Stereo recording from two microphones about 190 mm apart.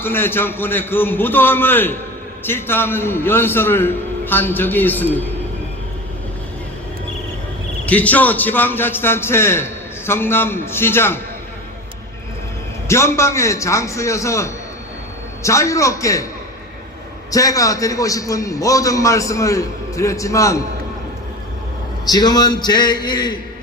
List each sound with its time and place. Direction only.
0.0 s a man's voice: 10° left (ahead or behind)
7.9 s a man's voice: 10° left (ahead or behind)
12.9 s a man's voice: 15° left (ahead or behind)
17.3 s a man's voice: 15° left (ahead or behind)
22.0 s a man's voice: 20° left (ahead or behind)